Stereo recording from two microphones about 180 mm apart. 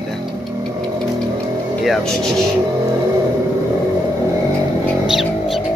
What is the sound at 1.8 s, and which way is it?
Speech, centre (ahead or behind).